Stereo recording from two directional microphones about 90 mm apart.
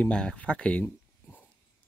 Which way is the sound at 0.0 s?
10° left (ahead or behind).